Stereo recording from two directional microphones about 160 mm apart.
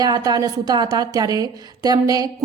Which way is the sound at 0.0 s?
25° right (ahead or behind).